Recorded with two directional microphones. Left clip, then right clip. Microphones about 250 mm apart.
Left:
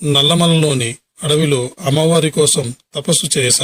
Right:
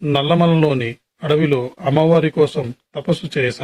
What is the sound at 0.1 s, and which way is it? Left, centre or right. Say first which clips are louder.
Speech: left 3 dB; left.